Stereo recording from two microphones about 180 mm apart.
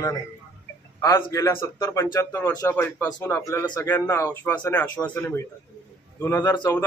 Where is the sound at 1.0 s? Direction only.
15° left (ahead or behind).